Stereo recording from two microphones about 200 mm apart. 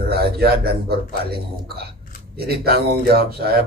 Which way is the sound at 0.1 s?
50° right (ahead or behind).